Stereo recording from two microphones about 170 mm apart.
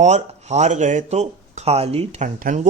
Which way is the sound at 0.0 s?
40° right (ahead or behind).